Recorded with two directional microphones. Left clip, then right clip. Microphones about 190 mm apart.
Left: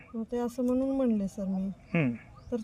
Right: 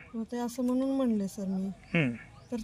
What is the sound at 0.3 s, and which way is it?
A woman's voice, 10° left (ahead or behind).